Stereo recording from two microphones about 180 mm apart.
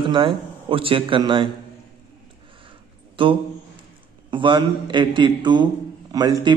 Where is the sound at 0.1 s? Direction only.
25° right (ahead or behind).